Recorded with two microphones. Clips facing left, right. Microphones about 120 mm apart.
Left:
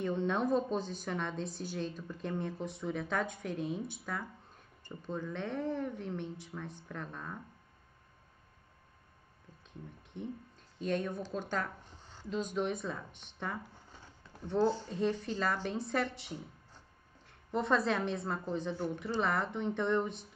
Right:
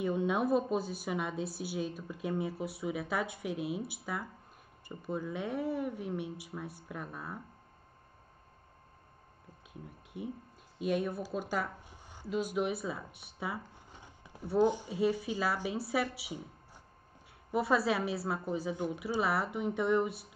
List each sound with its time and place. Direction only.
0.0 s a woman's voice: 10° right (ahead or behind)
9.7 s a sound: 10° right (ahead or behind)
10.8 s a woman's voice: 10° right (ahead or behind)